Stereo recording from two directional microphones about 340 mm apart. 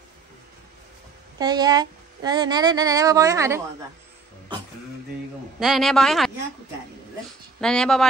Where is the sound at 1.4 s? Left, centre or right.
Centre.